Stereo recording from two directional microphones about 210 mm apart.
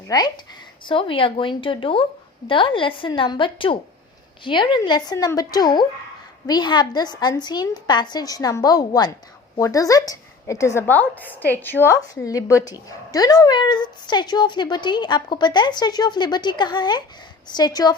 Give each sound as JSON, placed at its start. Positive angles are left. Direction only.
{"t": 0.1, "sound": "a woman's voice", "side_deg": 15}